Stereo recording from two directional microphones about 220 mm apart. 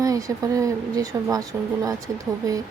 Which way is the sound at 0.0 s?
15° right (ahead or behind).